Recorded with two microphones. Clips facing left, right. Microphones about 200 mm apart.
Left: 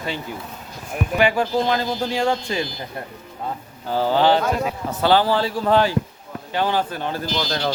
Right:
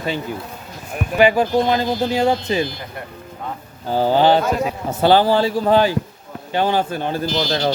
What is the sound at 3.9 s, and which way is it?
Speech, 15° right (ahead or behind).